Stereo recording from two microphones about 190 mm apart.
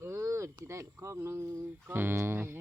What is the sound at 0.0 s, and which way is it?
Speech, 15° right (ahead or behind).